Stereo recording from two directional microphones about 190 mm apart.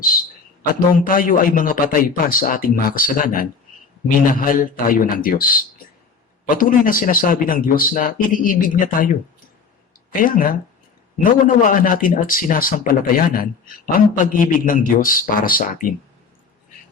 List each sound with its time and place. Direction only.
1.0 s speech: 45° left (ahead or behind)
10.1 s speech: 45° left (ahead or behind)